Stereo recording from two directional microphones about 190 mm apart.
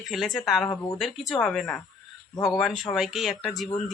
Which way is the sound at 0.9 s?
Centre (ahead or behind).